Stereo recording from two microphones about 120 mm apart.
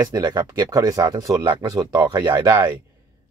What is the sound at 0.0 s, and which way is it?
Speech, 30° right (ahead or behind).